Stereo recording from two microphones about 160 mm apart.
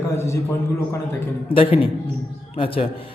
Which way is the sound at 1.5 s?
35° left (ahead or behind).